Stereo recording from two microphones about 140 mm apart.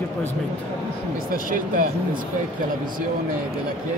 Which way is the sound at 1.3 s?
75° right (ahead or behind).